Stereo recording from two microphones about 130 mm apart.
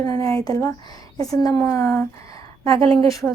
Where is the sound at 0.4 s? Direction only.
30° left (ahead or behind).